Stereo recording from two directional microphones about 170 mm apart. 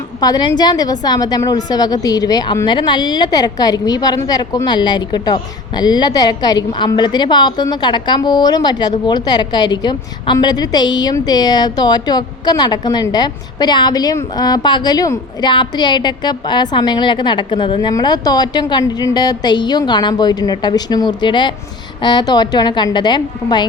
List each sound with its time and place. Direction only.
0.2 s a woman's voice: 25° left (ahead or behind)